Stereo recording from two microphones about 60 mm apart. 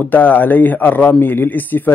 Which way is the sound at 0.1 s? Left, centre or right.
Left.